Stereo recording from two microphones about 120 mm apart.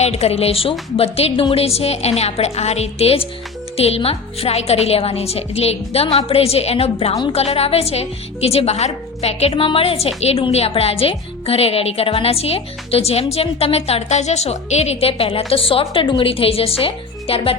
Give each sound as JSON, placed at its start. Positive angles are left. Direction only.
{"t": 0.0, "sound": "a woman's voice", "side_deg": 60}